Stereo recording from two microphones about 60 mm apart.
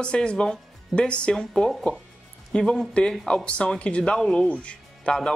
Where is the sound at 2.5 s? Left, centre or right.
Centre.